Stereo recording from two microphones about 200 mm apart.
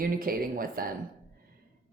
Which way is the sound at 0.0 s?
45° right (ahead or behind).